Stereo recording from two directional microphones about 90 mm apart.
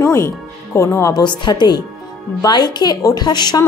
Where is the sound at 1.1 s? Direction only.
55° left (ahead or behind).